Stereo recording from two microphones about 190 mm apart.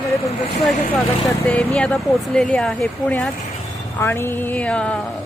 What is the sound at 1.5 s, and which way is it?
A woman's voice, 5° left (ahead or behind).